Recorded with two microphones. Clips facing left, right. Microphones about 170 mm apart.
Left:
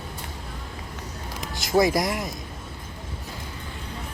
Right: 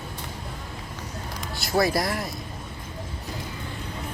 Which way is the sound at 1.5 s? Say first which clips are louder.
Left 2 dB; 15° left (ahead or behind).